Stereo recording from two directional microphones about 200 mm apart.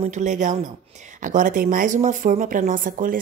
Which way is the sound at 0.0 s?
35° right (ahead or behind).